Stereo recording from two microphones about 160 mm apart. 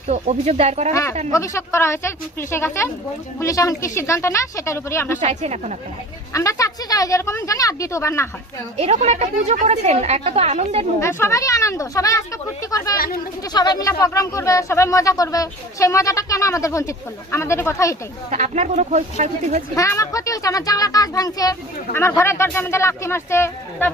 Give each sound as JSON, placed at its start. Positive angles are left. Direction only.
{"t": 0.1, "sound": "speech", "side_deg": -45}
{"t": 1.3, "sound": "speech", "side_deg": 20}
{"t": 5.2, "sound": "speech", "side_deg": -45}
{"t": 6.3, "sound": "speech", "side_deg": 20}
{"t": 8.8, "sound": "a woman's voice", "side_deg": -40}
{"t": 11.0, "sound": "speech", "side_deg": 15}
{"t": 18.3, "sound": "speech", "side_deg": -45}
{"t": 19.7, "sound": "speech", "side_deg": 20}